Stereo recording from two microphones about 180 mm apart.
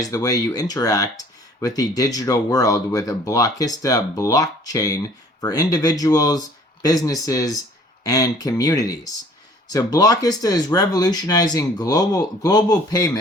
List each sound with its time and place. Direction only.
0.0 s speech: 20° left (ahead or behind)